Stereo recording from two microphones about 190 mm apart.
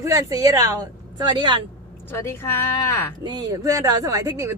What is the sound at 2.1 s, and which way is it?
Speech, 10° left (ahead or behind).